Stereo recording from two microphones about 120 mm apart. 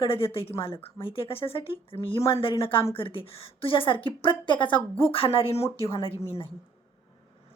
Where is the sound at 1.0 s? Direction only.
50° left (ahead or behind).